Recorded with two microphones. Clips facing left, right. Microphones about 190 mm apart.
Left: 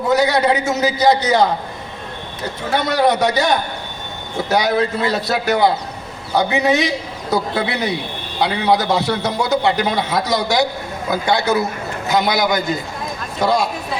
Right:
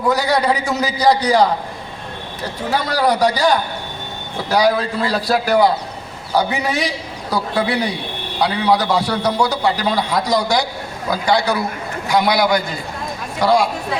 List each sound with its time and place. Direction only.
0.1 s a man's voice: 25° left (ahead or behind)
2.7 s a man's voice: 25° left (ahead or behind)
4.5 s a man's voice: 25° left (ahead or behind)
6.3 s a man's voice: 20° left (ahead or behind)